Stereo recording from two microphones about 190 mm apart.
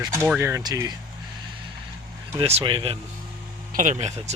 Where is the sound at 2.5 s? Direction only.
30° right (ahead or behind).